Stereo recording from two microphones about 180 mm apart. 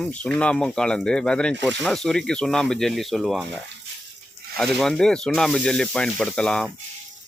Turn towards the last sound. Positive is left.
turn(degrees=5)  # may be behind; listen again after turning